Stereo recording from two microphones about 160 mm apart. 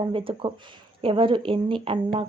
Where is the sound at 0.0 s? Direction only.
35° right (ahead or behind).